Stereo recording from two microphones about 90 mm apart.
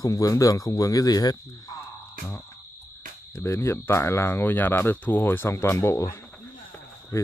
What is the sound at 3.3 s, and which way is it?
Speech, 35° left (ahead or behind).